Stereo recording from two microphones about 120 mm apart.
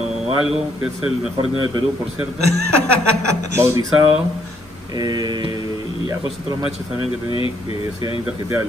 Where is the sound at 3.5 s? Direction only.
25° right (ahead or behind).